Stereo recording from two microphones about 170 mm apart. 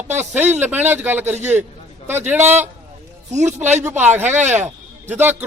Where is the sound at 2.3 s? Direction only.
10° right (ahead or behind).